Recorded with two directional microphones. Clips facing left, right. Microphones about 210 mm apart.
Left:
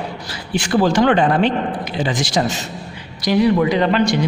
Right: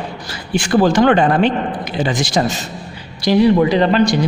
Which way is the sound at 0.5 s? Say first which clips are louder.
Right 3 dB; 50° right (ahead or behind).